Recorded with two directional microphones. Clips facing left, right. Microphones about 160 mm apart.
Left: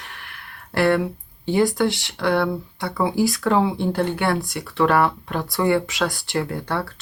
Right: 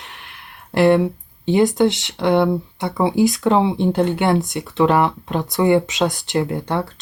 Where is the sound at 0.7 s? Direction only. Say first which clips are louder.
Right 5 dB; 20° right (ahead or behind).